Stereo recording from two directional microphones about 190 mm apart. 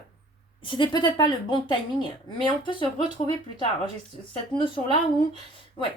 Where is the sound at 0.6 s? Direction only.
25° left (ahead or behind).